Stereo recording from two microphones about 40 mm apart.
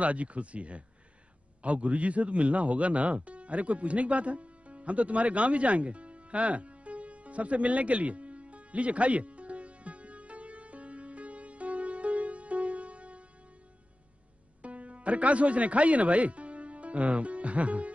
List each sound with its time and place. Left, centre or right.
0.0 s speech: right
1.6 s music: right
14.6 s speech: right